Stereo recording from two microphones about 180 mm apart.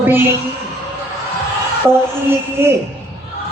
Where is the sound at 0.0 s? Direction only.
10° right (ahead or behind).